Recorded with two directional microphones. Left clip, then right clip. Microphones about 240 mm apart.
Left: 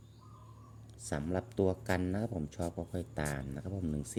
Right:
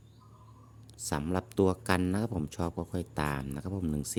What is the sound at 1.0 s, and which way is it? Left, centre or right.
Speech, right.